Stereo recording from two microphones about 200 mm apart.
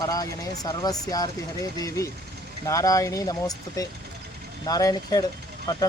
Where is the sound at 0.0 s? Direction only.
15° left (ahead or behind).